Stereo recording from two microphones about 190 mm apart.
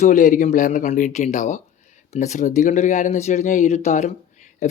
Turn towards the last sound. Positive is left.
turn(degrees=35)  # may be behind; listen again after turning